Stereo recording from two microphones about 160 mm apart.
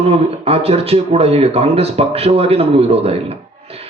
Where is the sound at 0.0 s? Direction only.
40° right (ahead or behind).